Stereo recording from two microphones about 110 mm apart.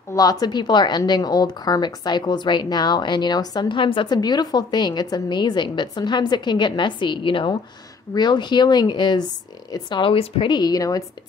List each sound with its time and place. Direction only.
0.1 s speech: 35° left (ahead or behind)